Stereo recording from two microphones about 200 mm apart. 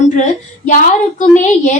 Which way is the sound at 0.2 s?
40° left (ahead or behind).